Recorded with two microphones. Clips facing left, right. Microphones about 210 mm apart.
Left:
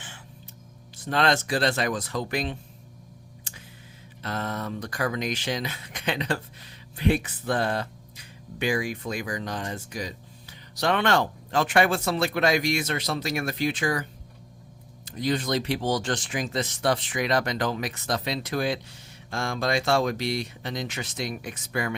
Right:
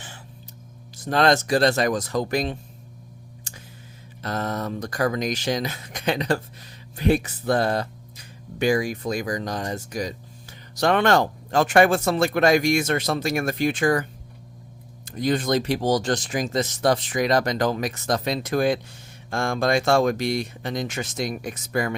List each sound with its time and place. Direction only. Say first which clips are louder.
0.9 s speech: right 5 dB; 40° right (ahead or behind)
3.5 s a sound: right 3 dB; 40° right (ahead or behind)
4.2 s speech: right 4 dB; 40° right (ahead or behind)